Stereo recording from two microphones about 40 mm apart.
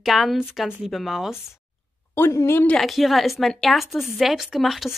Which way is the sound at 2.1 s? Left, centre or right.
Left.